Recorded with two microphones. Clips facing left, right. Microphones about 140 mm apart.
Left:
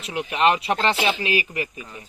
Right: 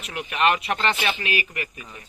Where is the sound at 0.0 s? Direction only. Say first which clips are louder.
Left 2 dB; 30° left (ahead or behind).